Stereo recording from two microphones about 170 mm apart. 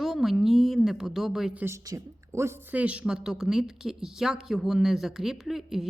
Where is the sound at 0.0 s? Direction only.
Centre (ahead or behind).